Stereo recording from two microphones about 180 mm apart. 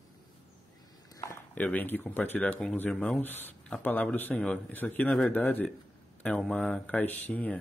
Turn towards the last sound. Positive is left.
turn(degrees=10)  # may be behind; listen again after turning